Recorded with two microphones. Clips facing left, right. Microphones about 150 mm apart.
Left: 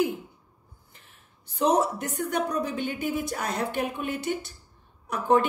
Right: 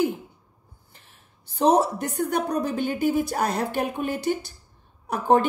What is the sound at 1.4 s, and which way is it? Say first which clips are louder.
A woman's voice: right 3 dB; 30° right (ahead or behind).